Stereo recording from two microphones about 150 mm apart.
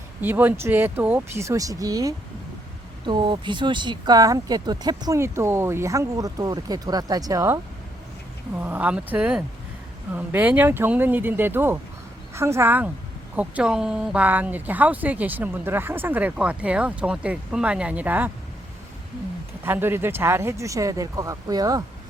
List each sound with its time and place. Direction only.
0.2 s speech: 10° right (ahead or behind)
19.6 s speech: 15° right (ahead or behind)